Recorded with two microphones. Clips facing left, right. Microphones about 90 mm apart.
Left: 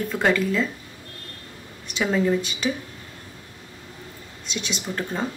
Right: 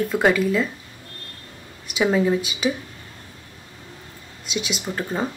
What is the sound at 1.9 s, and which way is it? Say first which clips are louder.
Speech: right 2 dB; 10° right (ahead or behind).